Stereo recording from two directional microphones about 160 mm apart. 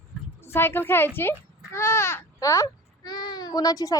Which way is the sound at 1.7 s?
15° left (ahead or behind).